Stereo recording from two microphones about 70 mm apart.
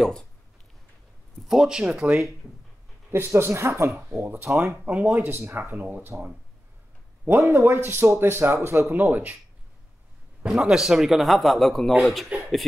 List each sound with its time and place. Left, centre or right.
0.0 s speech: centre
1.5 s speech: centre
3.1 s speech: right
4.8 s speech: centre
5.5 s speech: right
7.2 s speech: right
10.5 s a man's voice: centre